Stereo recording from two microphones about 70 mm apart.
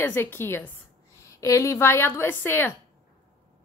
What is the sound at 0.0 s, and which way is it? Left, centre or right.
Speech, left.